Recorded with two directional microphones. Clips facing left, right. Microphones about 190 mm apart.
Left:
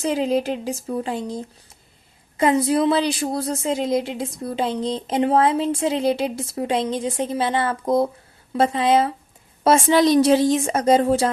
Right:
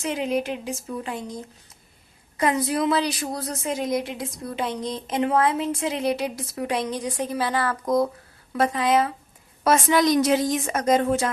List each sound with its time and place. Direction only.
0.0 s a woman's voice: 35° left (ahead or behind)